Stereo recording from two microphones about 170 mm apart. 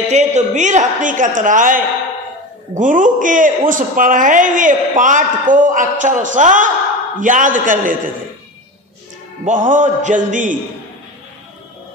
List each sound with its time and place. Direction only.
0.1 s a man's voice: 40° right (ahead or behind)
9.5 s a man's voice: 50° right (ahead or behind)